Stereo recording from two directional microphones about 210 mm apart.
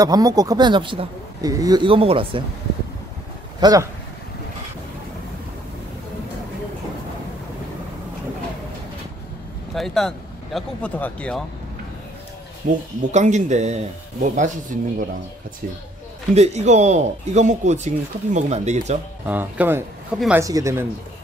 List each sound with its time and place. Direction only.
0.0 s speech: 15° right (ahead or behind)
3.6 s speech: 15° right (ahead or behind)
9.8 s speech: centre (ahead or behind)
12.6 s speech: 40° right (ahead or behind)
16.3 s speech: 30° right (ahead or behind)
19.2 s speech: 10° right (ahead or behind)